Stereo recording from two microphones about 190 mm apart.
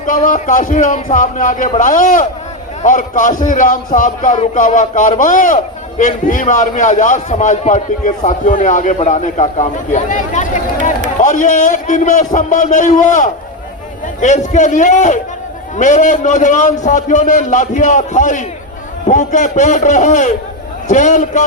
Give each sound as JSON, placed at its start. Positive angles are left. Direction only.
{"t": 0.0, "sound": "speech", "side_deg": 45}